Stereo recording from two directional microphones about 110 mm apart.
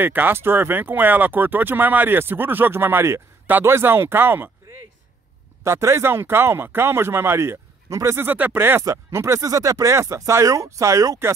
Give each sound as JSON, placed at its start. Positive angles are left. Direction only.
{"t": 0.0, "sound": "speech", "side_deg": -15}
{"t": 5.6, "sound": "speech", "side_deg": -25}